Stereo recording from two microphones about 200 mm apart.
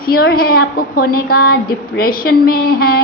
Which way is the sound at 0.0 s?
50° left (ahead or behind).